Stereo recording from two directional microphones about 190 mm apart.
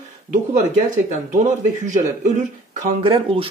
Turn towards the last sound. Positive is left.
turn(degrees=-30)  # may be behind; listen again after turning